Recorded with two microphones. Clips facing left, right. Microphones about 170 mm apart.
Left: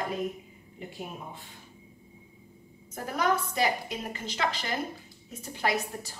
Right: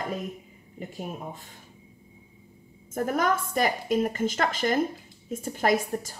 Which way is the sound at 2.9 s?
50° right (ahead or behind).